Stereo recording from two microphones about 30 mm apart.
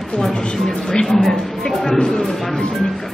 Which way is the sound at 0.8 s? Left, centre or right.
Left.